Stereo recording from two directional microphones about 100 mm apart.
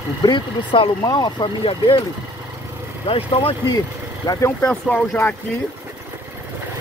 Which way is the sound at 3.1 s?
65° left (ahead or behind).